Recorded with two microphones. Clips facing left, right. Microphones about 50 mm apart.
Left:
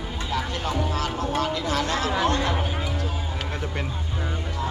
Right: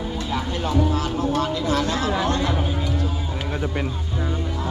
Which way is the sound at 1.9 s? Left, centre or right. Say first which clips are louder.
Right 1 dB; left.